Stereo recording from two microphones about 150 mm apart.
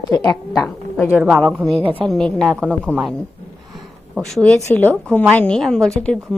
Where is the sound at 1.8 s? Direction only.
35° right (ahead or behind).